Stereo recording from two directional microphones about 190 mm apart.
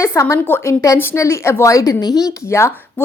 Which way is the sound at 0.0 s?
15° left (ahead or behind).